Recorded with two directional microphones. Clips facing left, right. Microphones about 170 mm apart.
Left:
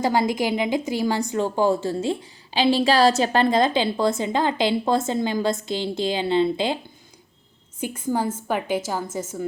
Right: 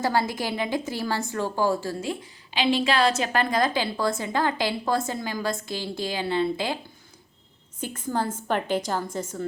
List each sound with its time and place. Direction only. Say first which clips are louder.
0.0 s a woman's voice: left 4 dB; 15° left (ahead or behind)
7.8 s a woman's voice: left 3 dB; 10° left (ahead or behind)